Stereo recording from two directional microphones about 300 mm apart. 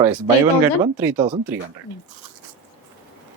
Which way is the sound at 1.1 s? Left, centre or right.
Centre.